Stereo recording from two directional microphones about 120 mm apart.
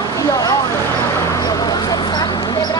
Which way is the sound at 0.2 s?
30° left (ahead or behind).